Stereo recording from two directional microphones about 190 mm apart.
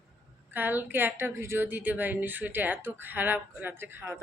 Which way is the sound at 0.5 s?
10° right (ahead or behind).